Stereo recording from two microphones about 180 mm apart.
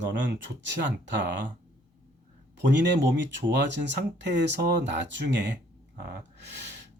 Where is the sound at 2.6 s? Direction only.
75° right (ahead or behind).